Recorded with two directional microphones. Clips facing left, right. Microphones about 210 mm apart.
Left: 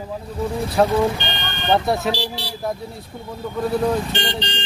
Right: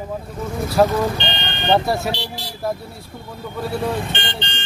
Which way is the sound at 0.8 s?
Centre (ahead or behind).